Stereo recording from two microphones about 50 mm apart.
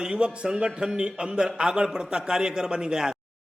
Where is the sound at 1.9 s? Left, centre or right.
Centre.